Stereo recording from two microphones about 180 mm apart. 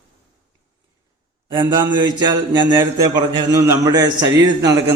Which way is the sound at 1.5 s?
20° right (ahead or behind).